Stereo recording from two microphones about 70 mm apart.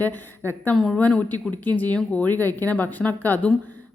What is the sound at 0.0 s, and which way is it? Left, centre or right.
Speech, left.